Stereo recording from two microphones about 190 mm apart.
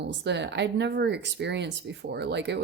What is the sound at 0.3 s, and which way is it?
Speech, 65° right (ahead or behind).